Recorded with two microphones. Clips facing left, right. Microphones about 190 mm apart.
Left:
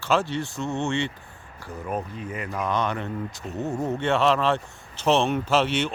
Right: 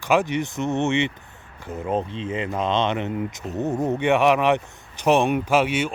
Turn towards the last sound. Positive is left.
turn(degrees=-10)  # may be behind; listen again after turning